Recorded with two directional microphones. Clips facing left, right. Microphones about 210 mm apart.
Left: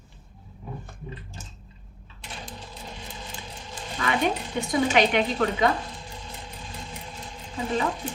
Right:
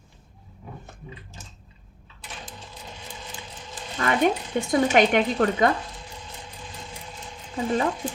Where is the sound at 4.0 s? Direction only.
50° right (ahead or behind).